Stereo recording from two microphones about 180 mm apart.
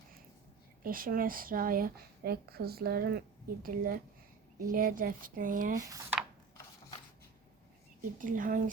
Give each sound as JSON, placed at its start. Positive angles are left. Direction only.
{"t": 0.8, "sound": "speech", "side_deg": -50}
{"t": 5.9, "sound": "speech", "side_deg": -15}
{"t": 8.2, "sound": "speech", "side_deg": -50}